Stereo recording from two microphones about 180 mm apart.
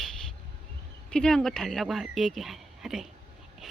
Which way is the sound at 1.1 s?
5° left (ahead or behind).